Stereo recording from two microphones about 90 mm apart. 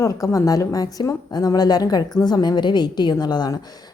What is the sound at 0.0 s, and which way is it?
A woman's voice, 35° left (ahead or behind).